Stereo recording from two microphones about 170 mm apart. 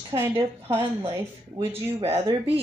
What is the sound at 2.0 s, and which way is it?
Speech, 35° right (ahead or behind).